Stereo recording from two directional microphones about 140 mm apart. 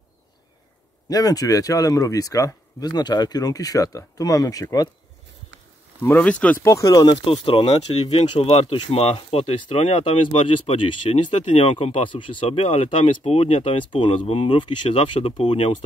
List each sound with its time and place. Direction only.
1.0 s speech: 25° left (ahead or behind)
6.0 s speech: 10° left (ahead or behind); by 7.2 s 30° left (ahead or behind)
7.2 s speech: 40° left (ahead or behind)